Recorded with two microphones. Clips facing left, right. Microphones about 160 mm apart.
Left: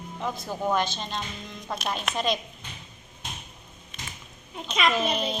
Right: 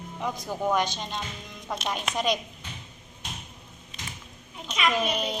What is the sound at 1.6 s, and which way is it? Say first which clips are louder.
Speech: even; 5° left (ahead or behind).